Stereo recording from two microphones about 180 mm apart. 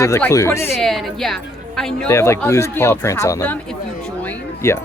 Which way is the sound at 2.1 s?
15° left (ahead or behind).